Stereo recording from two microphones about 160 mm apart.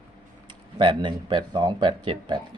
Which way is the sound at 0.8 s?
30° right (ahead or behind).